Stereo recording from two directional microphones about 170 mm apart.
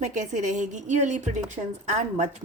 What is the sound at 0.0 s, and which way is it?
A woman's voice, 45° right (ahead or behind).